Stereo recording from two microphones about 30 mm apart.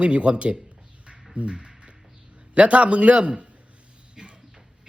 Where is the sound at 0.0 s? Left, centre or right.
Right.